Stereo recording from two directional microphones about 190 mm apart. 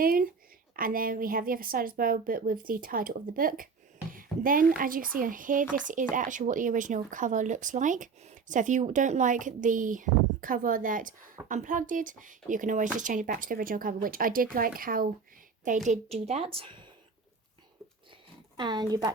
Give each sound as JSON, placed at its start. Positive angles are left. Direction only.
{"t": 0.0, "sound": "a woman's voice", "side_deg": -50}
{"t": 15.9, "sound": "a woman's voice", "side_deg": -35}
{"t": 18.5, "sound": "a woman's voice", "side_deg": -25}